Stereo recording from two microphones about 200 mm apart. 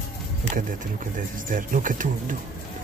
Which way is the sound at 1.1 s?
45° right (ahead or behind).